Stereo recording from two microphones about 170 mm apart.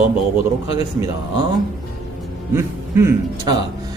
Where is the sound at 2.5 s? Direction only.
15° right (ahead or behind).